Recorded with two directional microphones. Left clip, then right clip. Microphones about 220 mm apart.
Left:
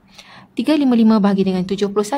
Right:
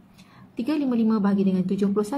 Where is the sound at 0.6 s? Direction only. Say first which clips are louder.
Left 9 dB; 50° left (ahead or behind).